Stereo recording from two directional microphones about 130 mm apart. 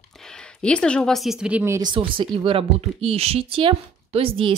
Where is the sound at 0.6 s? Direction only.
10° left (ahead or behind).